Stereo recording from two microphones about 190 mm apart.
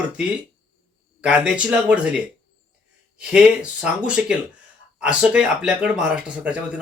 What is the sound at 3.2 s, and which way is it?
Speech, 5° right (ahead or behind).